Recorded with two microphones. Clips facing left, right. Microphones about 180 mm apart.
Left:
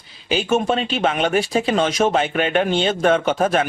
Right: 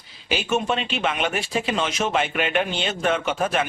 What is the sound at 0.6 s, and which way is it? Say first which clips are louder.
Speech: left 5 dB; 40° left (ahead or behind).